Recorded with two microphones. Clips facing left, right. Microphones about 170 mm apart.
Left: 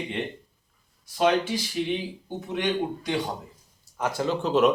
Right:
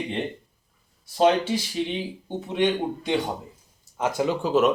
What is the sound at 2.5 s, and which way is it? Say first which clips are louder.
A man's voice: right 3 dB; 20° right (ahead or behind).